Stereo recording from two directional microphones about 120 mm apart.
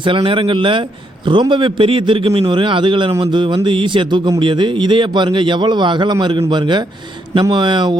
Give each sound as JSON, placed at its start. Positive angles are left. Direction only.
{"t": 0.0, "sound": "a man's voice", "side_deg": -45}